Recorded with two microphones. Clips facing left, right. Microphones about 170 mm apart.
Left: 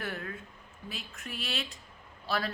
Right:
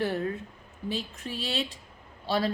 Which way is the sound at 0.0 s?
30° right (ahead or behind).